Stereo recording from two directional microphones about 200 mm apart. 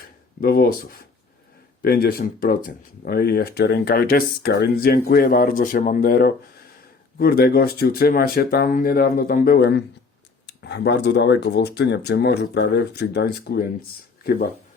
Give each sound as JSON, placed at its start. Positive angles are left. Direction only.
{"t": 0.4, "sound": "speech", "side_deg": 45}